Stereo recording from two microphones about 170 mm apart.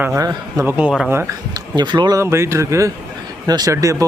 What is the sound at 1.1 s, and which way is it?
A man's voice, 15° right (ahead or behind).